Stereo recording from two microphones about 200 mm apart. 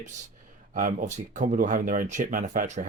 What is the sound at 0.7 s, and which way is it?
Speech, 40° right (ahead or behind).